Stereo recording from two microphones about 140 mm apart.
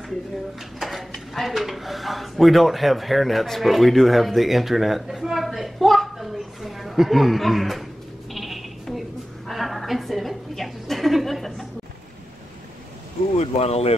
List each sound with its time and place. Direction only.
0.7 s speech: centre (ahead or behind)
8.3 s sheep: centre (ahead or behind)
9.5 s a sound: centre (ahead or behind)
13.4 s speech: 50° left (ahead or behind)